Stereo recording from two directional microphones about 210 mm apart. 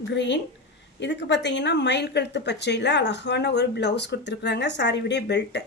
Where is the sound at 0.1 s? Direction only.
55° left (ahead or behind).